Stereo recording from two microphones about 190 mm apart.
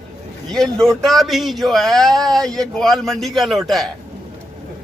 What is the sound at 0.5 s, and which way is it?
A man's voice, centre (ahead or behind).